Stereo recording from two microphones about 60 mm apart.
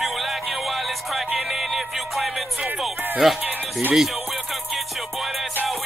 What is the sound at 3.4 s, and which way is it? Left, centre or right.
Music, right.